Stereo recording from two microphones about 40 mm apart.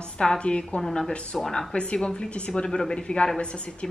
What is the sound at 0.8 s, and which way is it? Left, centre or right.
Speech, centre.